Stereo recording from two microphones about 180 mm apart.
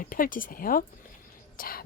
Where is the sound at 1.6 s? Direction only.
55° left (ahead or behind).